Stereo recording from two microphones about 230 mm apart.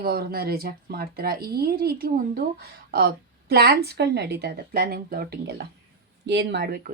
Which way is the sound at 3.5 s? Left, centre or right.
Right.